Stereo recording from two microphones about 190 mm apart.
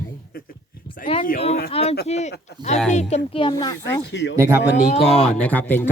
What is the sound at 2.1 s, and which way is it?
Speech, 35° left (ahead or behind).